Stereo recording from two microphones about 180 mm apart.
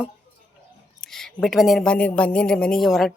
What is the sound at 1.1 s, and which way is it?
A man's voice, centre (ahead or behind).